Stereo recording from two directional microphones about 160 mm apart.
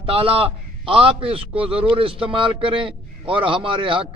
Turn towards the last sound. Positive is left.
turn(degrees=-30)  # may be behind; listen again after turning